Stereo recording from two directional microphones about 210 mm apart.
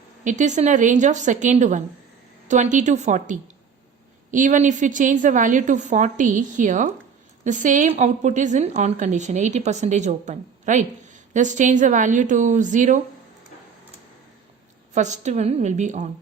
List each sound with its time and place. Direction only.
0.3 s a woman's voice: 35° right (ahead or behind)
14.9 s a woman's voice: 35° right (ahead or behind)